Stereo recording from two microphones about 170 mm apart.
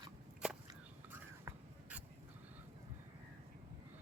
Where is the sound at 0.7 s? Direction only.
15° right (ahead or behind).